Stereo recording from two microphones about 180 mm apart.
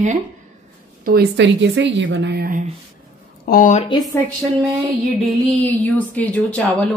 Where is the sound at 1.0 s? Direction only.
75° right (ahead or behind); by 2.6 s 55° right (ahead or behind).